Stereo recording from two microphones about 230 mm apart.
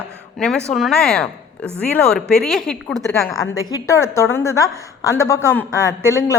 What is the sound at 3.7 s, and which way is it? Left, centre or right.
A woman's voice, centre.